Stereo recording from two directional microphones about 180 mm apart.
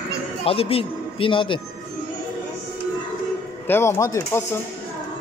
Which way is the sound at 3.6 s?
15° left (ahead or behind).